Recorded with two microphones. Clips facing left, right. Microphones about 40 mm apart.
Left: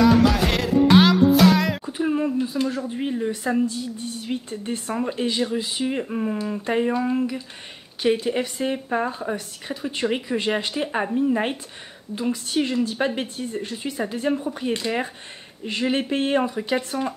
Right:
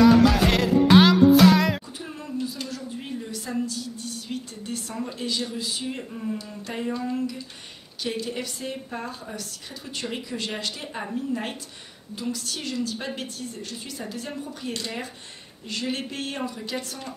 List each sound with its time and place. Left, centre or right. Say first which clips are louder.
0.0 s music: right 1 dB; centre
2.0 s a woman's voice: left 10 dB; left
6.0 s speech: left 6 dB; left
6.6 s a woman's voice: left 8 dB; left
10.7 s speech: left 9 dB; left
12.2 s a woman's voice: left 8 dB; left